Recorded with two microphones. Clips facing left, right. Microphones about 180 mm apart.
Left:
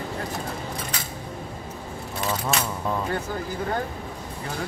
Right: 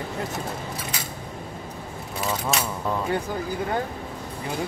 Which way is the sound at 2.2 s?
Centre (ahead or behind).